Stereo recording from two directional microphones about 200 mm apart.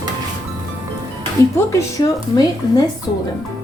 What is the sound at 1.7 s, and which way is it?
Speech, 15° left (ahead or behind).